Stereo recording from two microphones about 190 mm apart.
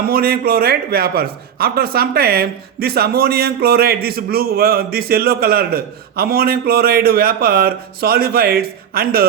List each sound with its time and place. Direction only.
0.1 s a man's voice: 50° right (ahead or behind)